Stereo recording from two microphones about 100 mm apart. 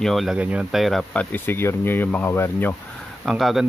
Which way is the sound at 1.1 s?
20° left (ahead or behind).